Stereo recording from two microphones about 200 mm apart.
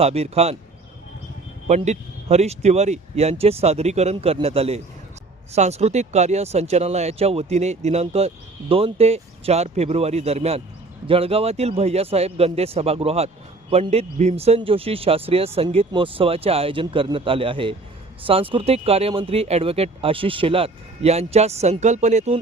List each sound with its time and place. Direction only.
0.0 s speech: 30° right (ahead or behind)
1.6 s speech: 35° right (ahead or behind)